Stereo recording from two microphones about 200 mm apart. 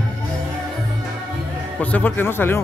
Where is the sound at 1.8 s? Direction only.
10° left (ahead or behind).